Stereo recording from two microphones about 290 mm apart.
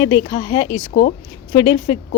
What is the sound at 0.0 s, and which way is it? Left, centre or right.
Speech, centre.